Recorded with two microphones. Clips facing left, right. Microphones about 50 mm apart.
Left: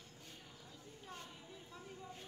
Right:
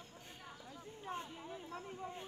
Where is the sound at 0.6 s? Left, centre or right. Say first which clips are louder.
Right 8 dB; right.